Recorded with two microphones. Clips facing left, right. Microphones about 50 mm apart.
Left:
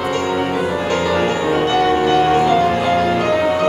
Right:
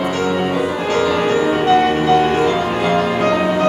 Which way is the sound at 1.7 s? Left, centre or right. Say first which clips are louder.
Right 1 dB; right.